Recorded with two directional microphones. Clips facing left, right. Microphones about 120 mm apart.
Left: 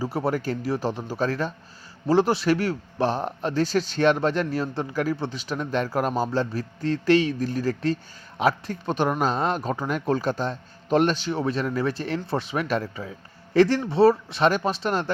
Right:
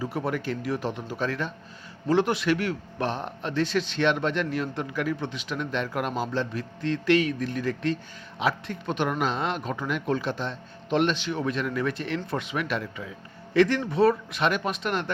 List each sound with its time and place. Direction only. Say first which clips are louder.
0.0 s speech: left 3 dB; 35° left (ahead or behind)